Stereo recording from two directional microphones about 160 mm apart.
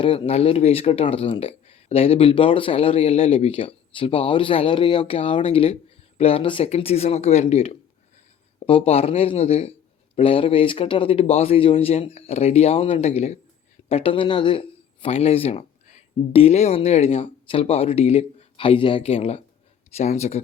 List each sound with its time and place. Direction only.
0.0 s speech: 35° left (ahead or behind)